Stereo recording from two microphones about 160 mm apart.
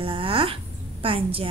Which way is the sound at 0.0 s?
35° right (ahead or behind).